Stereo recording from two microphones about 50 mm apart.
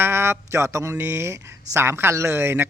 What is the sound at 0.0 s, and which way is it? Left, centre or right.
Speech, right.